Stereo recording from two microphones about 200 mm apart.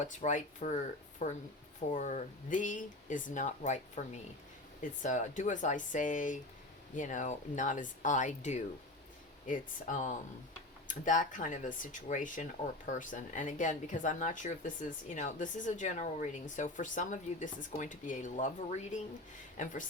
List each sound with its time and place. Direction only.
0.1 s speech: 40° left (ahead or behind)